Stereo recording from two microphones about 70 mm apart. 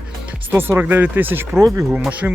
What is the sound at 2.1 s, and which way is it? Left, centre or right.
Speech, right.